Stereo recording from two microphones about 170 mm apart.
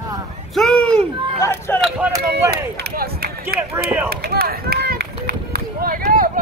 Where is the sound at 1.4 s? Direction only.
15° left (ahead or behind).